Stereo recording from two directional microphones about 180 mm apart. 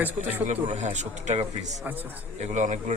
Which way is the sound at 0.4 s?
40° right (ahead or behind).